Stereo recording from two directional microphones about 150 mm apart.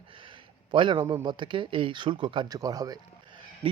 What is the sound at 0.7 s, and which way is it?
Speech, 30° right (ahead or behind).